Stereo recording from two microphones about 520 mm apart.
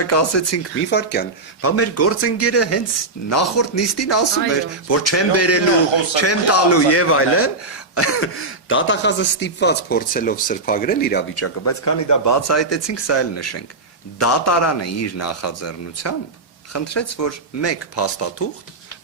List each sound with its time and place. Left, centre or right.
0.0 s speech: left